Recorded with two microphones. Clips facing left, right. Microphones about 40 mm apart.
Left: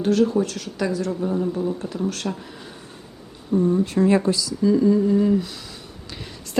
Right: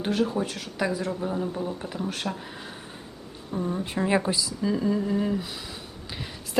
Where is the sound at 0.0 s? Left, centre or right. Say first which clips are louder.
Left 7 dB; centre.